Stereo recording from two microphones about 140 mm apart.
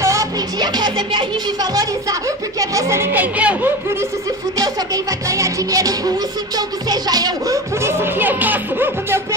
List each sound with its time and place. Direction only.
0.0 s music: 25° right (ahead or behind)
2.6 s speech: 20° right (ahead or behind)
4.6 s music: 25° right (ahead or behind)
6.9 s speech: 30° right (ahead or behind)